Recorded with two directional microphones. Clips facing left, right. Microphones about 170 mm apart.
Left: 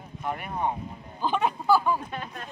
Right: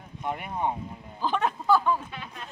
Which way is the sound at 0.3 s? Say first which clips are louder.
Even; 20° right (ahead or behind).